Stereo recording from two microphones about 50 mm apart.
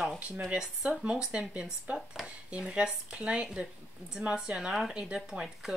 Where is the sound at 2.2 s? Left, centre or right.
Right.